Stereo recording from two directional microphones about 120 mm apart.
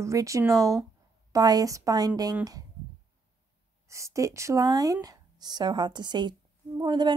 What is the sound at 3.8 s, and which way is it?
A woman's voice, 25° right (ahead or behind).